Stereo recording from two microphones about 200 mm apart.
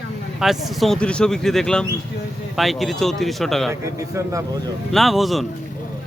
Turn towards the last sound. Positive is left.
turn(degrees=0)  # may be behind; listen again after turning